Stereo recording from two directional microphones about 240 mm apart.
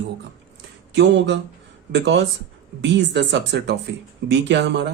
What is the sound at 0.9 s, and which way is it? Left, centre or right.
Speech, right.